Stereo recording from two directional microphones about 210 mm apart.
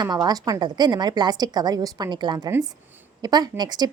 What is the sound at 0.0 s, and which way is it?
A woman's voice, 20° right (ahead or behind).